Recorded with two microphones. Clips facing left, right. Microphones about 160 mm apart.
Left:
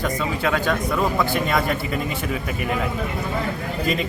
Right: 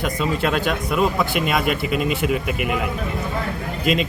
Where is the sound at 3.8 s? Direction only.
90° right.